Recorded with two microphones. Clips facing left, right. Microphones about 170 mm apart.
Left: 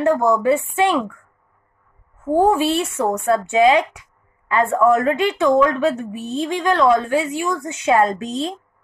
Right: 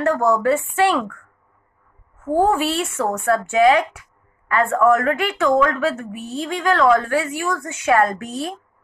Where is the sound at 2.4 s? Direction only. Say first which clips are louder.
Left 2 dB; 15° left (ahead or behind).